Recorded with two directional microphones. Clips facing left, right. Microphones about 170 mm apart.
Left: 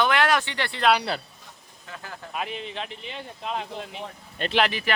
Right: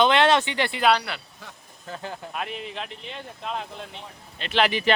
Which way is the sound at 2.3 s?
Centre (ahead or behind).